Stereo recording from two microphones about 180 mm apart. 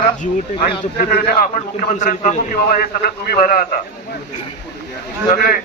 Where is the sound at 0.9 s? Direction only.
55° left (ahead or behind).